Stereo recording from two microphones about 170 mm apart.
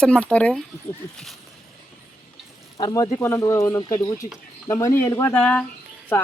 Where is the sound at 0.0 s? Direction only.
5° left (ahead or behind).